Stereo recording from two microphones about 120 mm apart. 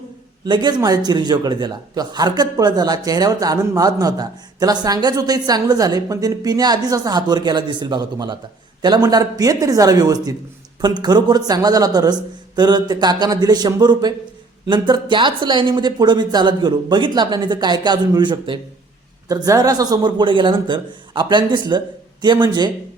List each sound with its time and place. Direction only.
0.4 s a man's voice: 35° right (ahead or behind)
19.3 s a man's voice: 30° right (ahead or behind)